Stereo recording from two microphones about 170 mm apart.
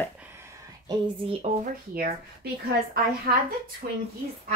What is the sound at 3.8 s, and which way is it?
Speech, 55° right (ahead or behind).